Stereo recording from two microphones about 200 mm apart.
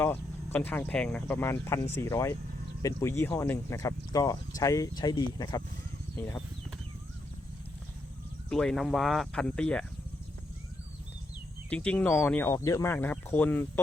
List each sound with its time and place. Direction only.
0.0 s speech: 10° left (ahead or behind)
8.4 s speech: 5° left (ahead or behind)
11.7 s speech: 10° left (ahead or behind)